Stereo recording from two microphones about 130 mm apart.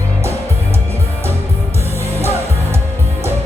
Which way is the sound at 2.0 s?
20° right (ahead or behind).